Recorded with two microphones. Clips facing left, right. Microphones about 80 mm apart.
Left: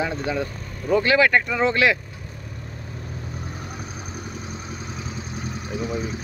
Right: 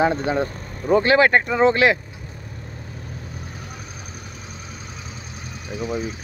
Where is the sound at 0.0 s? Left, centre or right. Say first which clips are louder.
Right 5 dB; right.